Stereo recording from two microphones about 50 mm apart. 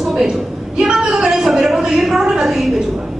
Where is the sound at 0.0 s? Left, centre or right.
Centre.